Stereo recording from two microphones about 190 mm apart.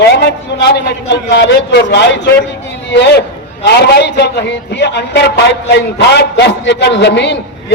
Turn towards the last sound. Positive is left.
turn(degrees=65)  # may be behind; listen again after turning